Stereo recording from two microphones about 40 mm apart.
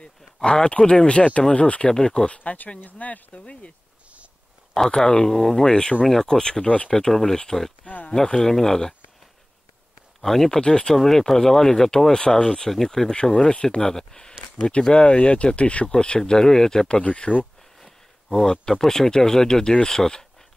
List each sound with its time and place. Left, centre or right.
0.0 s speech: left
2.3 s speech: left
4.7 s speech: centre
7.8 s speech: left
8.1 s speech: centre
10.2 s speech: centre
14.6 s speech: left
15.9 s speech: left
16.9 s speech: left
17.7 s speech: centre